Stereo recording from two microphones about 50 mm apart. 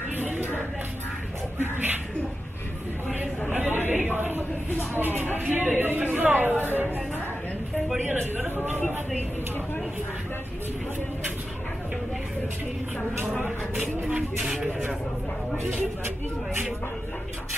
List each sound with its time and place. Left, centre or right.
0.2 s music: right
1.6 s speech: right
3.5 s chatter: right
4.2 s speech: right